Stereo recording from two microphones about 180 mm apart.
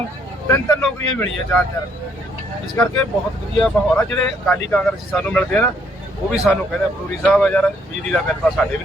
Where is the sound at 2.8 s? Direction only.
10° left (ahead or behind).